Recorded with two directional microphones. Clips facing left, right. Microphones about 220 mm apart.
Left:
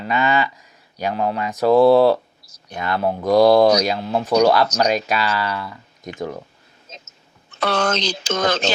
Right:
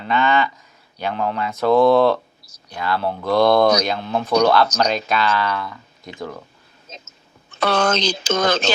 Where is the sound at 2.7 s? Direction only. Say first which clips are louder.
Left 1 dB; 20° left (ahead or behind).